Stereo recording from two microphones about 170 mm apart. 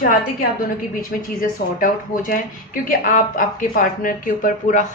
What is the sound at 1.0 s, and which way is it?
Speech, 55° left (ahead or behind).